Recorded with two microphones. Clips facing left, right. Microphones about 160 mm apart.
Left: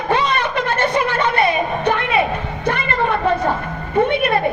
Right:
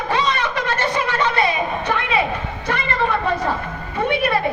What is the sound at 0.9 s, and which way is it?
Music, 55° left (ahead or behind).